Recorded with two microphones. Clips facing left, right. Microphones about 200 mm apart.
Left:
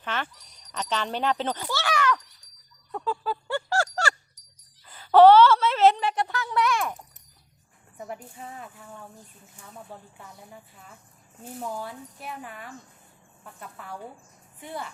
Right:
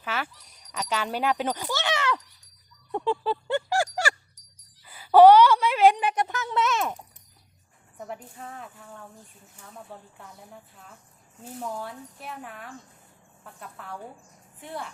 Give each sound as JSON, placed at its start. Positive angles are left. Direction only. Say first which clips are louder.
{"t": 0.0, "sound": "speech", "louder": "even", "side_deg": -5}
{"t": 2.9, "sound": "music", "louder": "right 4 dB", "side_deg": -25}
{"t": 4.9, "sound": "speech", "louder": "right 1 dB", "side_deg": -10}
{"t": 7.9, "sound": "speech", "louder": "even", "side_deg": 5}